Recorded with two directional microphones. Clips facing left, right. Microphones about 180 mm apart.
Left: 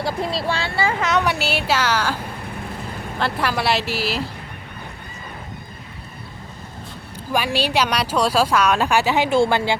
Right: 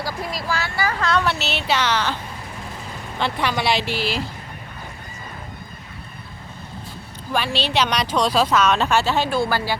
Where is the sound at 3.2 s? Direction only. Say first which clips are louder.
Even; 5° left (ahead or behind).